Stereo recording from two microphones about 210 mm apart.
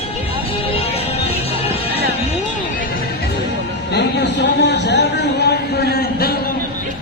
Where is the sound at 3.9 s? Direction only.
55° left (ahead or behind).